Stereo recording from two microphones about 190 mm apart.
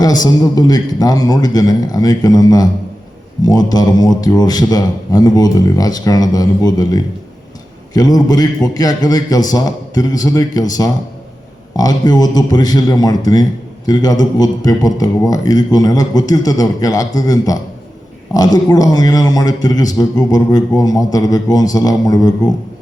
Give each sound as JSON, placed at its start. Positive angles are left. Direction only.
{"t": 0.0, "sound": "a man's voice", "side_deg": 20}